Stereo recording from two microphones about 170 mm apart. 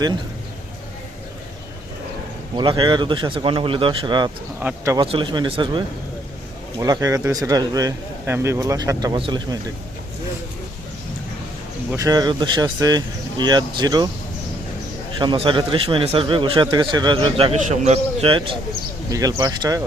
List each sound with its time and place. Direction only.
2.6 s a man's voice: 25° right (ahead or behind)
11.9 s a man's voice: 20° right (ahead or behind)
15.2 s a man's voice: 30° right (ahead or behind)
19.1 s a man's voice: 20° right (ahead or behind)